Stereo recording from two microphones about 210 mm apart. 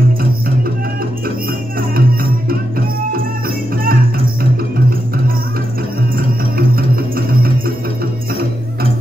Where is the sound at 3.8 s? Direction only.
45° right (ahead or behind).